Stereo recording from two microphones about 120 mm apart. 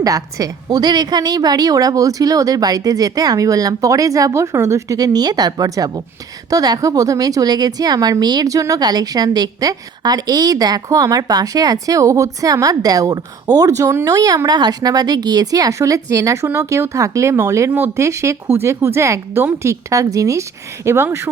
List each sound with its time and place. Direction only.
0.0 s a woman's voice: 30° right (ahead or behind)